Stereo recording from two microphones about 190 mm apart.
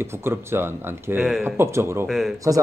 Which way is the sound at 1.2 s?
Centre (ahead or behind).